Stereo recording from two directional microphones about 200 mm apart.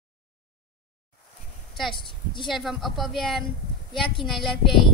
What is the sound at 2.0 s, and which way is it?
Speech, 25° left (ahead or behind).